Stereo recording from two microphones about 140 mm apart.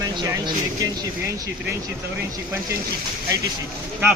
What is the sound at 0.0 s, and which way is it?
Vehicle, 30° right (ahead or behind).